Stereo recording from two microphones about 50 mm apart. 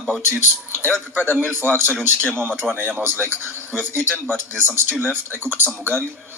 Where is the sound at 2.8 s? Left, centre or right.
Right.